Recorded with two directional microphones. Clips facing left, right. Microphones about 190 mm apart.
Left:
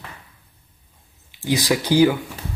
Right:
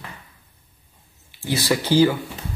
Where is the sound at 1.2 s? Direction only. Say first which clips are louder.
Left 2 dB; 15° left (ahead or behind).